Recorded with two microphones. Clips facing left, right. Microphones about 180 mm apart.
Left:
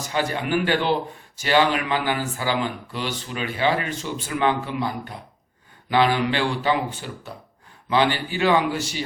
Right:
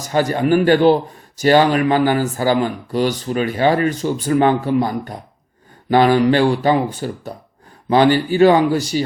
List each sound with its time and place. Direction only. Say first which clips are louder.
0.0 s speech: right 8 dB; 40° right (ahead or behind)